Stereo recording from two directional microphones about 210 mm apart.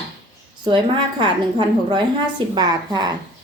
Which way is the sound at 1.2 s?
20° right (ahead or behind).